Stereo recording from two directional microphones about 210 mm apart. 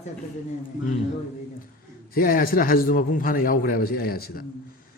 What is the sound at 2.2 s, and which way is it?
A man's voice, 45° left (ahead or behind).